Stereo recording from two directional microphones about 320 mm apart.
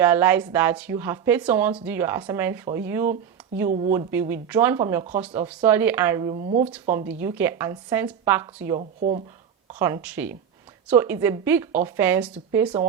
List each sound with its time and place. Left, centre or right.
0.0 s speech: centre
3.7 s speech: right
3.9 s speech: centre
6.7 s speech: centre
8.8 s speech: right
9.7 s speech: centre